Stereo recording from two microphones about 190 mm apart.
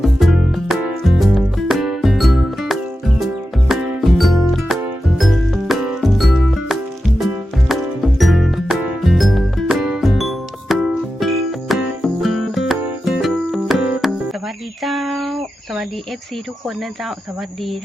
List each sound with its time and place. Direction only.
0.0 s music: centre (ahead or behind)